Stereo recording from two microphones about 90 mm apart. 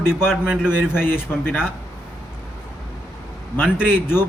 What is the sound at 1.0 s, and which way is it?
Speech, 25° left (ahead or behind).